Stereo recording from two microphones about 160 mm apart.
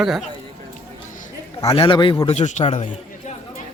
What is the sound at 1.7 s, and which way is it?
Speech, 30° left (ahead or behind).